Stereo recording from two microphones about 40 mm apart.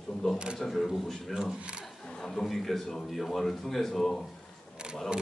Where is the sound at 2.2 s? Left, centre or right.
Centre.